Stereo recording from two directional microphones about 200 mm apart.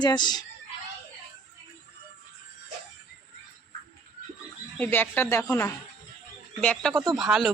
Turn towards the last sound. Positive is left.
turn(degrees=0)  # may be behind; listen again after turning